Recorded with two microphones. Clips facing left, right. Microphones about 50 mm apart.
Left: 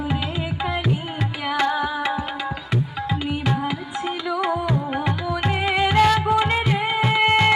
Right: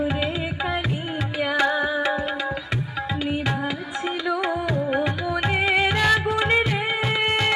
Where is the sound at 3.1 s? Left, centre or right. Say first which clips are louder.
Left 1 dB; centre.